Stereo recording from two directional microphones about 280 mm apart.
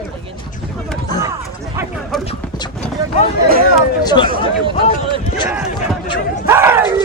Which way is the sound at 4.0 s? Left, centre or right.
Centre.